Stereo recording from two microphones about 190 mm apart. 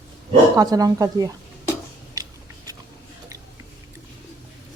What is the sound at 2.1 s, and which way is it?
Biting, 15° right (ahead or behind).